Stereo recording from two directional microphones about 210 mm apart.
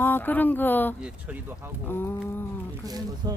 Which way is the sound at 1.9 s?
10° left (ahead or behind).